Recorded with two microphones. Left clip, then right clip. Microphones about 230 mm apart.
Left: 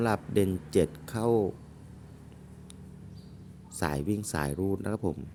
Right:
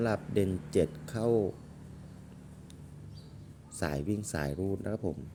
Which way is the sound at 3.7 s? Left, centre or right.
Centre.